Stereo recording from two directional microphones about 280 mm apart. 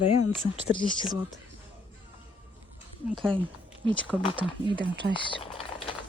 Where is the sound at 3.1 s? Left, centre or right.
Centre.